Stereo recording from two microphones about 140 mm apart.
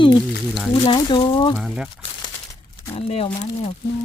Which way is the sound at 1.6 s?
5° right (ahead or behind).